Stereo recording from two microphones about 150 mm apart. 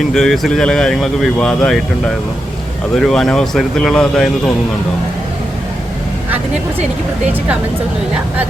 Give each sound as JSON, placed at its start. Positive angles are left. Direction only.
{"t": 0.1, "sound": "speech", "side_deg": 5}
{"t": 2.9, "sound": "speech", "side_deg": 0}